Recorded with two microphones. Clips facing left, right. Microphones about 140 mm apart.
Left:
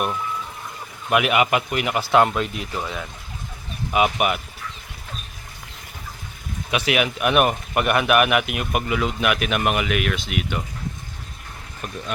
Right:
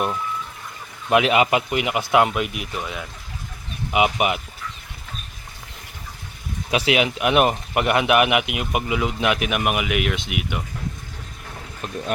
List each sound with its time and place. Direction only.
1.1 s speech: 25° right (ahead or behind); by 3.1 s 5° right (ahead or behind)
3.9 s speech: 20° right (ahead or behind)
6.7 s speech: 30° right (ahead or behind)